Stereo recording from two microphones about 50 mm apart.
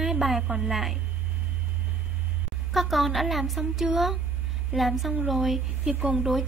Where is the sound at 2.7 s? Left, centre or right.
Centre.